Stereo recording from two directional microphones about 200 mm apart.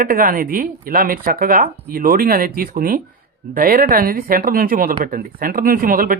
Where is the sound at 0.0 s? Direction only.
45° right (ahead or behind).